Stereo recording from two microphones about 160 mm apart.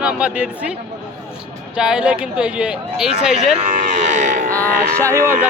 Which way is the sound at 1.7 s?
5° right (ahead or behind).